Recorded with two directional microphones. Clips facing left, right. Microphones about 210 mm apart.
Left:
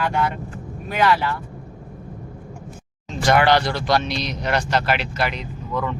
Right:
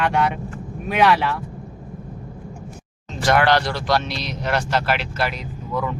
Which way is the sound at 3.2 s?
Centre (ahead or behind).